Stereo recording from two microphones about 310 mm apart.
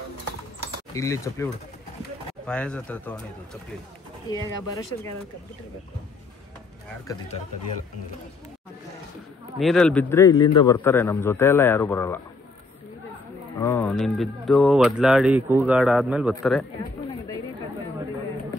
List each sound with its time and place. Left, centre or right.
0.9 s a man's voice: centre
9.6 s a man's voice: centre
13.6 s speech: centre